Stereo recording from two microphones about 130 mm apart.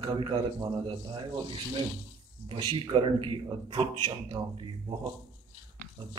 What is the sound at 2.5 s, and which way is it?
Speech, 40° right (ahead or behind).